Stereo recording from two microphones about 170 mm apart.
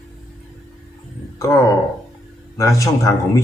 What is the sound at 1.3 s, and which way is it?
Speech, 15° left (ahead or behind).